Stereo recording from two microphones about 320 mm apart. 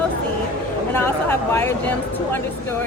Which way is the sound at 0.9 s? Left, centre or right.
Centre.